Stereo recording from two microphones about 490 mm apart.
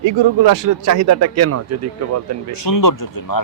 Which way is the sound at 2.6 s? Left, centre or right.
Left.